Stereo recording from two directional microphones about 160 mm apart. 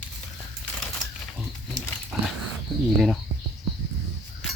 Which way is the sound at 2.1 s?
Centre (ahead or behind).